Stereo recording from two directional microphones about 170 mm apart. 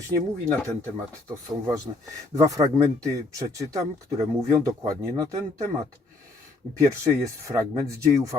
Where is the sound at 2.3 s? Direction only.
20° right (ahead or behind).